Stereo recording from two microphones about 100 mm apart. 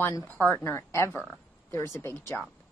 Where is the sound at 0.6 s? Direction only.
25° left (ahead or behind).